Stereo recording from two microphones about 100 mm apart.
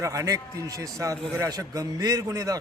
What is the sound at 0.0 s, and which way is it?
A man's voice, 35° right (ahead or behind).